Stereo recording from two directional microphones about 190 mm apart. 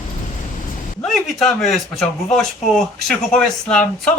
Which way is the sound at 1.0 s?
Centre (ahead or behind).